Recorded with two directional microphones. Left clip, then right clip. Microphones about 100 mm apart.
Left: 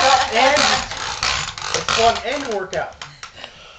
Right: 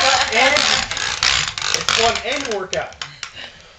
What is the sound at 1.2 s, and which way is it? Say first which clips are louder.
Ratchet: right 4 dB; 15° left (ahead or behind).